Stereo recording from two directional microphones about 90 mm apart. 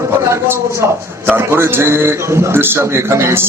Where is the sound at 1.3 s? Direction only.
25° right (ahead or behind).